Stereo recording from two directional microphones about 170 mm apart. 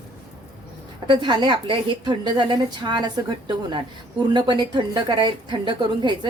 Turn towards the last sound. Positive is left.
turn(degrees=-25)  # may be behind; listen again after turning